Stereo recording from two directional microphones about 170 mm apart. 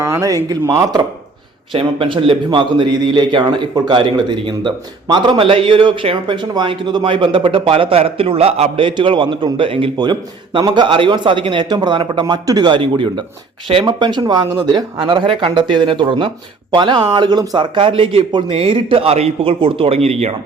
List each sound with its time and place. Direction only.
0.0 s a man's voice: 15° right (ahead or behind)
1.7 s a man's voice: 30° right (ahead or behind)